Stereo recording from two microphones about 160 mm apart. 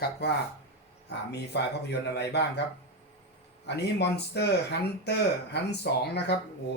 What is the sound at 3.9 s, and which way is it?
Speech, 90° left.